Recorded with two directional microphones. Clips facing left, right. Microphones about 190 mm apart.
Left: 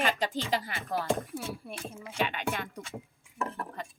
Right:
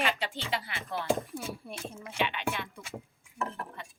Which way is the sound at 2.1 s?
40° left (ahead or behind).